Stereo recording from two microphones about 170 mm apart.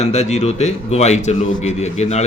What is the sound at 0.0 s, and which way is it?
Speech, 40° left (ahead or behind).